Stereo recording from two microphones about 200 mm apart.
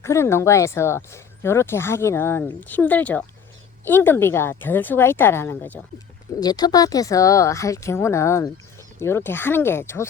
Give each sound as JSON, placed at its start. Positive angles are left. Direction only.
{"t": 0.0, "sound": "speech", "side_deg": 15}
{"t": 6.4, "sound": "speech", "side_deg": 20}